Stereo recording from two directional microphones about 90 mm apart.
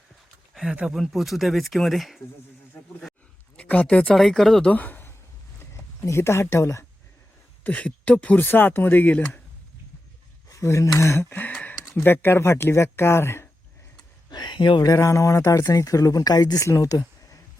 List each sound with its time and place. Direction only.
0.5 s speech: 5° right (ahead or behind)
3.6 s speech: 15° left (ahead or behind)
4.7 s a sound: 20° left (ahead or behind)
6.0 s speech: 30° left (ahead or behind)
7.6 s speech: 15° left (ahead or behind)
10.5 s speech: 35° left (ahead or behind)
13.9 s a sound: 50° left (ahead or behind)
14.8 s speech: 40° left (ahead or behind)